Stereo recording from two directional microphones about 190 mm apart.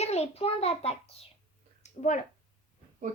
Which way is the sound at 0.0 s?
35° left (ahead or behind).